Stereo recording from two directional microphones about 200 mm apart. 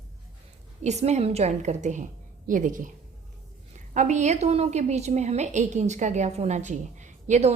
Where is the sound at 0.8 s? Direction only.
35° right (ahead or behind).